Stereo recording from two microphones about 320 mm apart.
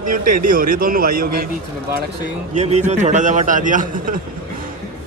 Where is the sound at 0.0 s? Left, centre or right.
Right.